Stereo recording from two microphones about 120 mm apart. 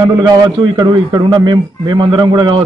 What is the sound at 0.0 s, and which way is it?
A man's voice, 30° right (ahead or behind).